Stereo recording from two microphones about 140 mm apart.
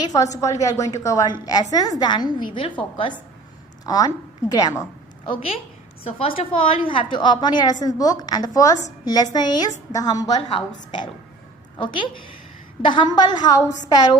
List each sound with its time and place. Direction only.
0.0 s a woman's voice: 25° left (ahead or behind)
6.1 s a woman's voice: 40° left (ahead or behind)
12.8 s a woman's voice: 35° left (ahead or behind)